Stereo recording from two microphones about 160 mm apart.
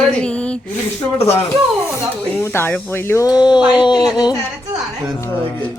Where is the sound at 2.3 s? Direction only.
15° left (ahead or behind).